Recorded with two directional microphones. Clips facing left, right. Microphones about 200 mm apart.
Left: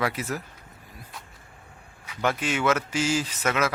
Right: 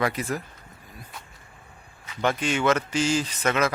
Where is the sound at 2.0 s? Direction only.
5° left (ahead or behind).